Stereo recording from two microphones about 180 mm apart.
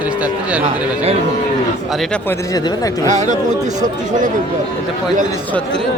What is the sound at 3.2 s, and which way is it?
Speech, 40° right (ahead or behind).